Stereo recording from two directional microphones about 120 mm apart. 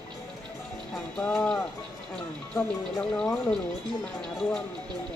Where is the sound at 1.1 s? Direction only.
5° left (ahead or behind).